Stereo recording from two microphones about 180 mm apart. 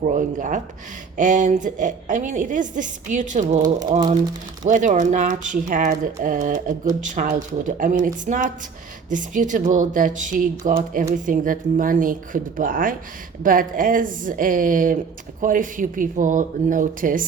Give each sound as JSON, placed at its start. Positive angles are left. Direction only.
{"t": 0.0, "sound": "a woman's voice", "side_deg": -45}
{"t": 3.6, "sound": "speech", "side_deg": -20}
{"t": 4.6, "sound": "a woman's voice", "side_deg": -45}